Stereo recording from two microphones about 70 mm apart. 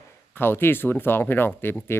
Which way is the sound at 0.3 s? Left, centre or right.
Left.